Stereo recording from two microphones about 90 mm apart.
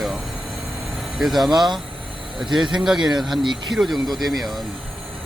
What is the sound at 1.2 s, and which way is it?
Mantra, centre (ahead or behind).